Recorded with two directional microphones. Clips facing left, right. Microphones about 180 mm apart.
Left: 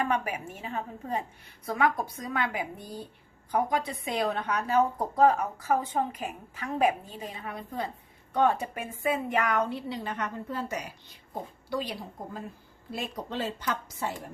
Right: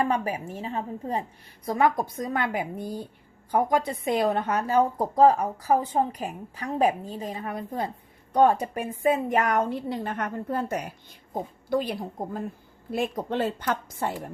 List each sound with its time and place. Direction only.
0.0 s a woman's voice: 30° right (ahead or behind); by 4.5 s 50° right (ahead or behind)
4.9 s a woman's voice: 30° right (ahead or behind); by 14.2 s 55° right (ahead or behind)